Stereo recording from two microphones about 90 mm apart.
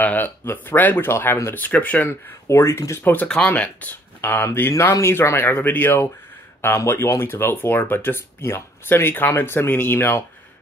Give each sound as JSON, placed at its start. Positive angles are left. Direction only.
{"t": 0.0, "sound": "speech", "side_deg": 20}
{"t": 2.4, "sound": "speech", "side_deg": 30}
{"t": 3.3, "sound": "speech", "side_deg": 10}